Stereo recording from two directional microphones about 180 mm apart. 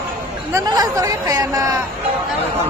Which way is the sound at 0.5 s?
20° right (ahead or behind).